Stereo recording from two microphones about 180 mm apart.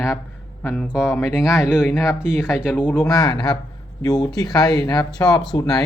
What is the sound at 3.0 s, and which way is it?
Speech, 20° left (ahead or behind).